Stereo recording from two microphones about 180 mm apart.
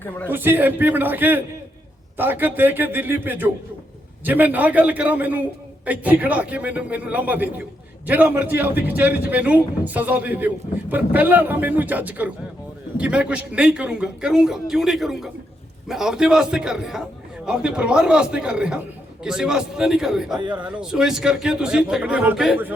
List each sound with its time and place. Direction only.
0.3 s a man's voice: 10° right (ahead or behind)